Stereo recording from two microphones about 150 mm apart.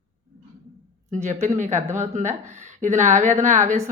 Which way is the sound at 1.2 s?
50° right (ahead or behind).